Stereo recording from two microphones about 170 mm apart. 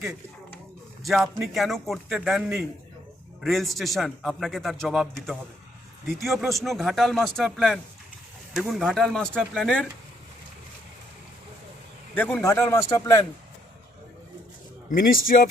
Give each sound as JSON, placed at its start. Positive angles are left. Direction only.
{"t": 1.0, "sound": "a man's voice", "side_deg": 0}
{"t": 12.1, "sound": "a man's voice", "side_deg": 5}
{"t": 14.8, "sound": "speech", "side_deg": 55}